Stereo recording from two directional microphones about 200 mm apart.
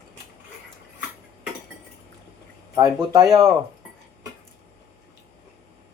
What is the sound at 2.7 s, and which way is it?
Speech, 20° right (ahead or behind).